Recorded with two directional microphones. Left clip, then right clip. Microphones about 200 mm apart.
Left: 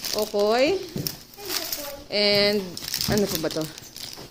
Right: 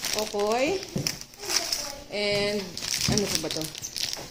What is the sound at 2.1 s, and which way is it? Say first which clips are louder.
Speech: left 6 dB; 15° left (ahead or behind).